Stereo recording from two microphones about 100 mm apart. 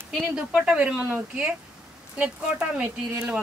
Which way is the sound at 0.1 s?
10° right (ahead or behind).